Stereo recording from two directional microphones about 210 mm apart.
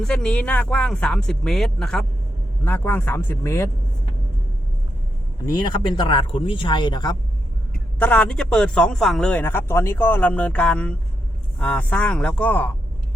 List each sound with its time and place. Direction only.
0.0 s a man's voice: 5° left (ahead or behind)
5.5 s speech: 20° left (ahead or behind)
7.9 s a man's voice: 5° left (ahead or behind)